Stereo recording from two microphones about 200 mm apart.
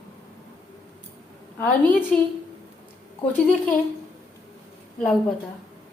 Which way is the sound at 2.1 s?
5° left (ahead or behind).